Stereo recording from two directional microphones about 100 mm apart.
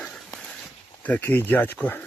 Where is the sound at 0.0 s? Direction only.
5° left (ahead or behind).